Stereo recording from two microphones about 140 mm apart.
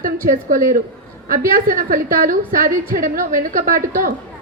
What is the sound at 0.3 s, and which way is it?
A woman's voice, 85° right.